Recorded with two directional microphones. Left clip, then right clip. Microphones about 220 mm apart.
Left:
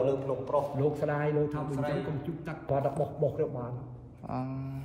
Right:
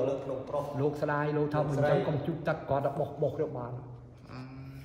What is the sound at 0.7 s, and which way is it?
A man's voice, 15° right (ahead or behind).